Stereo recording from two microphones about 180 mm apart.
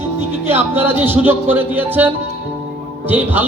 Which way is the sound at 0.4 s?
10° right (ahead or behind).